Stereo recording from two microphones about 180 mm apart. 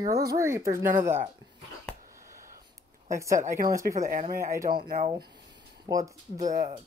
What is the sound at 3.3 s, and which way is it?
Speech, 45° right (ahead or behind).